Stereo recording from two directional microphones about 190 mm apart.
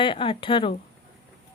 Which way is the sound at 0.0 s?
25° left (ahead or behind).